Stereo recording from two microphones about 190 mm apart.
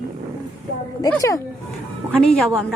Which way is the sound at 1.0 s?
15° left (ahead or behind).